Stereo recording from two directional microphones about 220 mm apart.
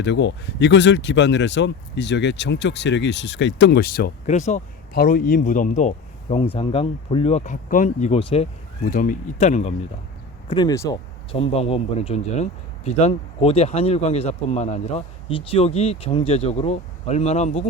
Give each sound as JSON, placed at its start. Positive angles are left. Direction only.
{"t": 0.0, "sound": "speech", "side_deg": 55}
{"t": 8.9, "sound": "speech", "side_deg": 40}
{"t": 10.5, "sound": "speech", "side_deg": 20}